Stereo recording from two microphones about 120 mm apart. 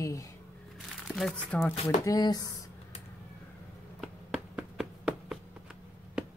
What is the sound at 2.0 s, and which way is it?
Speech, 30° left (ahead or behind).